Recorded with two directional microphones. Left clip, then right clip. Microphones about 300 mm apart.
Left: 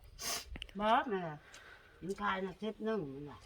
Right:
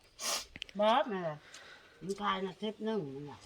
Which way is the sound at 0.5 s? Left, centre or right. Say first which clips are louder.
Right 3 dB; centre.